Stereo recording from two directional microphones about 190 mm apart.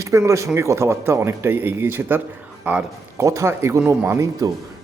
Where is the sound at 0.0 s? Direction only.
15° right (ahead or behind).